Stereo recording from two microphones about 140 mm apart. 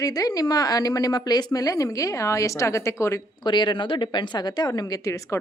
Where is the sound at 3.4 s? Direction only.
35° left (ahead or behind).